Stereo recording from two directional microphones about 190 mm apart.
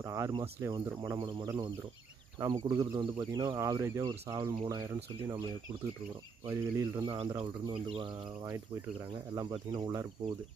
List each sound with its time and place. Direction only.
0.0 s speech: 15° right (ahead or behind)
6.4 s speech: 15° right (ahead or behind)
7.1 s speech: 25° right (ahead or behind)
9.3 s speech: 20° right (ahead or behind)